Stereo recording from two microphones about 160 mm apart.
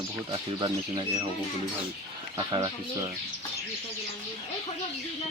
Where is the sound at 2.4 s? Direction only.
25° right (ahead or behind).